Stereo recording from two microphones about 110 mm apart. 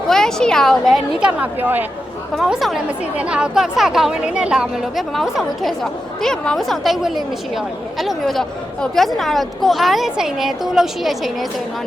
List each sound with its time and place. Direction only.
0.1 s speech: 5° left (ahead or behind)
1.2 s a woman's voice: 15° right (ahead or behind)
2.3 s speech: centre (ahead or behind)